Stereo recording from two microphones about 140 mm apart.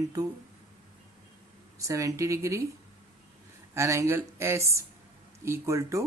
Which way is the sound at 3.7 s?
20° right (ahead or behind).